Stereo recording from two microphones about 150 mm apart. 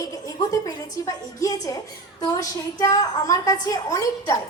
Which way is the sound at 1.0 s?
20° left (ahead or behind).